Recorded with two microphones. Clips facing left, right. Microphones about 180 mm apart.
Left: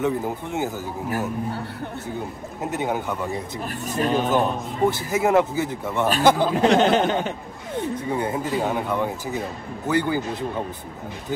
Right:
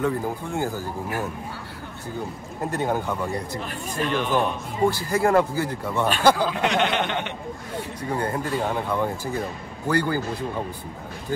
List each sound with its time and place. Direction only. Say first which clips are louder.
0.0 s a man's voice: left 1 dB; 20° left (ahead or behind)
2.7 s speech: even; 15° left (ahead or behind)
3.8 s speech: left 4 dB; 40° left (ahead or behind)
4.8 s a man's voice: even; 20° left (ahead or behind)
6.5 s speech: left 6 dB; 40° left (ahead or behind)
8.1 s a man's voice: right 1 dB; 15° left (ahead or behind)